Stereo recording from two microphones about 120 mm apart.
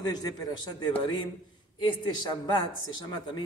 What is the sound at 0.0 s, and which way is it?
A man's voice, 35° left (ahead or behind).